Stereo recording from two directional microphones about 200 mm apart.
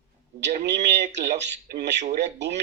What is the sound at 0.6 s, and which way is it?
Speech, 60° right (ahead or behind).